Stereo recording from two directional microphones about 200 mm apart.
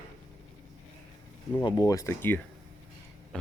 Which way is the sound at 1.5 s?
20° left (ahead or behind).